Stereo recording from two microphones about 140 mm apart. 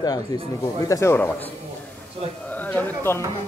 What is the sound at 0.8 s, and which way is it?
Speech, 20° left (ahead or behind).